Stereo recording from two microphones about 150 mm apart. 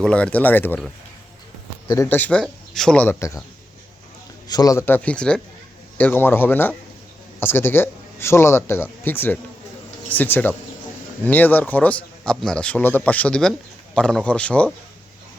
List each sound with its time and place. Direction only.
0.0 s a man's voice: 5° left (ahead or behind)
2.0 s a man's voice: 10° left (ahead or behind)
4.4 s a man's voice: 25° left (ahead or behind); by 14.7 s 10° left (ahead or behind)